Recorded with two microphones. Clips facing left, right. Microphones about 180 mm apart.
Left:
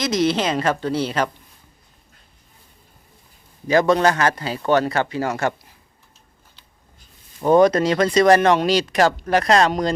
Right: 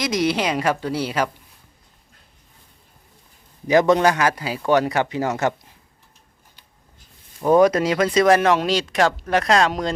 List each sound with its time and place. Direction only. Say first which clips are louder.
0.0 s a man's voice: left 1 dB; 10° right (ahead or behind)
3.7 s a man's voice: right 1 dB; 20° right (ahead or behind)
7.4 s speech: left 1 dB; 10° right (ahead or behind)